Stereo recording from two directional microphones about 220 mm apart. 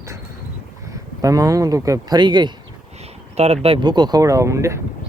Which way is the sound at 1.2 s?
15° right (ahead or behind).